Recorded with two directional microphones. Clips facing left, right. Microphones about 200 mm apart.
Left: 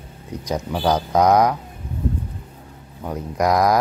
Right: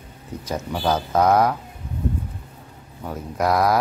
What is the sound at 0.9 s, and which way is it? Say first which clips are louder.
Speech: left 2 dB; 15° left (ahead or behind).